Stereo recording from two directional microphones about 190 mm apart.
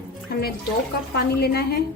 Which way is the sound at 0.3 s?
55° left (ahead or behind).